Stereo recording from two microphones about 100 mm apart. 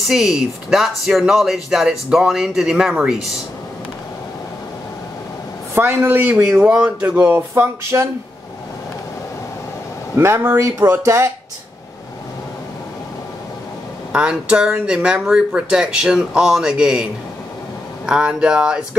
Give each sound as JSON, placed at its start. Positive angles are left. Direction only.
{"t": 0.1, "sound": "speech", "side_deg": -5}
{"t": 5.8, "sound": "speech", "side_deg": -20}
{"t": 10.1, "sound": "speech", "side_deg": -25}
{"t": 14.1, "sound": "speech", "side_deg": -10}